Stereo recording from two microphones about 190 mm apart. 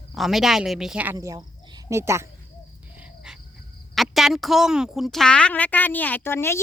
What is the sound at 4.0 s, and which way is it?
Speech, centre (ahead or behind).